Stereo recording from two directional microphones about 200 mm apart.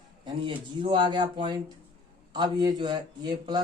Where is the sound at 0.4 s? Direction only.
25° right (ahead or behind).